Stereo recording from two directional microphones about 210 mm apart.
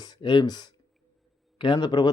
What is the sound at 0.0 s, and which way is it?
Speech, 20° left (ahead or behind).